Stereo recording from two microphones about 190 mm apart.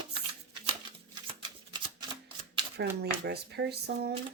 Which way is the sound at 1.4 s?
25° right (ahead or behind).